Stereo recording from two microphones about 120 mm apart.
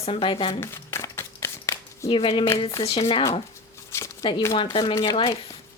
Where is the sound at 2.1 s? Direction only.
45° left (ahead or behind).